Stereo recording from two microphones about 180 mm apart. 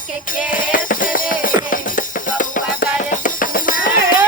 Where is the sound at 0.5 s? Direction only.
50° left (ahead or behind).